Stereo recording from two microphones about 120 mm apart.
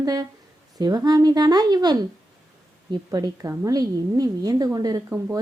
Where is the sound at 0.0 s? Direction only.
35° right (ahead or behind).